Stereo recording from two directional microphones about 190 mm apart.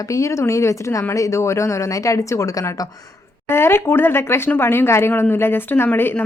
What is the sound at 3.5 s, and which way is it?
Speech, 10° left (ahead or behind).